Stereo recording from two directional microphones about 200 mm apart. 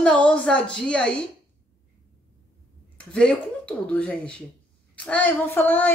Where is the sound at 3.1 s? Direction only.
5° left (ahead or behind).